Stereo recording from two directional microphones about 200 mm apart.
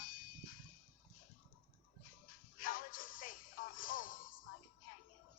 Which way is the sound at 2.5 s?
45° left (ahead or behind).